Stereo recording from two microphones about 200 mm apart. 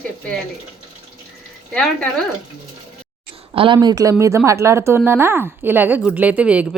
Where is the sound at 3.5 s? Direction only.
25° right (ahead or behind).